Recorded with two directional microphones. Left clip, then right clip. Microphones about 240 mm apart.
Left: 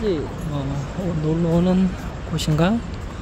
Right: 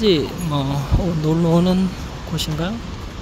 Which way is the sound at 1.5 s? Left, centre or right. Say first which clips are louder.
Right 2 dB; centre.